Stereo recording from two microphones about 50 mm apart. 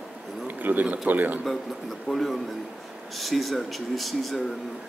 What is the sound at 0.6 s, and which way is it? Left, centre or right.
Speech, right.